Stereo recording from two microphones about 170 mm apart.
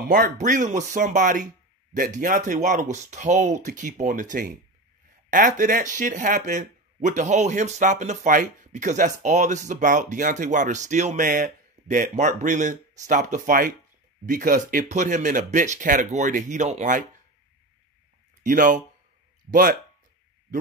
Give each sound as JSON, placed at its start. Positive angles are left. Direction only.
{"t": 0.1, "sound": "speech", "side_deg": -50}
{"t": 18.4, "sound": "speech", "side_deg": -50}